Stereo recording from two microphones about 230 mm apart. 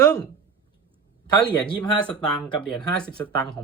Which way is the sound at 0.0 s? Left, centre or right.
Centre.